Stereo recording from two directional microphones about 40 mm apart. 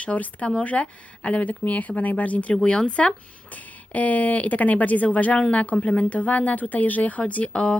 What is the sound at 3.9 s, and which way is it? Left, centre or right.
Speech, left.